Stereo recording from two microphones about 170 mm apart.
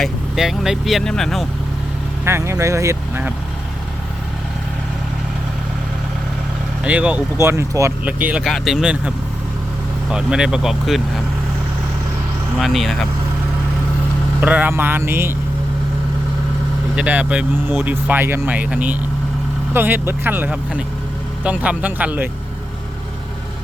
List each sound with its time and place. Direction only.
0.0 s speech: centre (ahead or behind)
2.2 s speech: 15° right (ahead or behind)
6.8 s speech: 5° right (ahead or behind)
12.5 s speech: centre (ahead or behind)
14.4 s speech: 10° right (ahead or behind)
16.9 s speech: 10° right (ahead or behind)